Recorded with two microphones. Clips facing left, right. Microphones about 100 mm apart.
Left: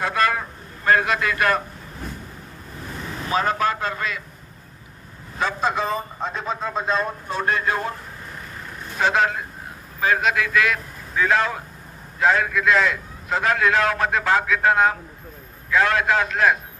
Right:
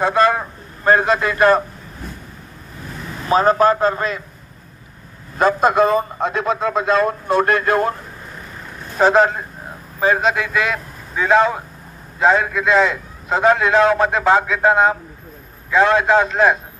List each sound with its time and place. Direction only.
0.0 s a man's voice: 25° right (ahead or behind)
3.3 s a man's voice: 35° right (ahead or behind)
5.4 s a man's voice: 60° right (ahead or behind)
8.9 s a man's voice: 35° right (ahead or behind)